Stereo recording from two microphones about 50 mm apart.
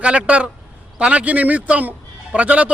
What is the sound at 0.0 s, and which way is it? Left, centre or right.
A man's voice, right.